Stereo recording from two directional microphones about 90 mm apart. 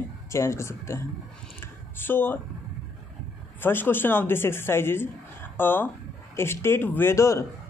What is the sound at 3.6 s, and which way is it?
Speech, 25° left (ahead or behind).